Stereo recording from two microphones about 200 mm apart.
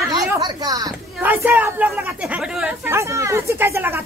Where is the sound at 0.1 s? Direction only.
20° right (ahead or behind).